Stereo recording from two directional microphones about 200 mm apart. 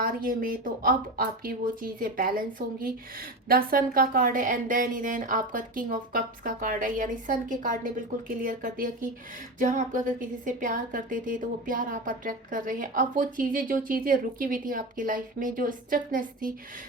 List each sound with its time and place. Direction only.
0.0 s a woman's voice: 45° right (ahead or behind)